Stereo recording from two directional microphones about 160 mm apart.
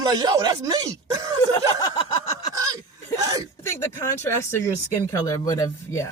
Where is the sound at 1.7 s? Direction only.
25° left (ahead or behind).